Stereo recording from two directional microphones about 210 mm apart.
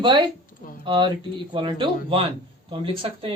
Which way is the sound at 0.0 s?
20° right (ahead or behind).